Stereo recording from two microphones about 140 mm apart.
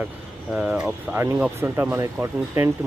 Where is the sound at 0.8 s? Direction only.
20° right (ahead or behind).